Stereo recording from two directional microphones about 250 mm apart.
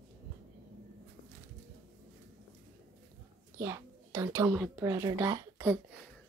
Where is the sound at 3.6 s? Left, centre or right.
Centre.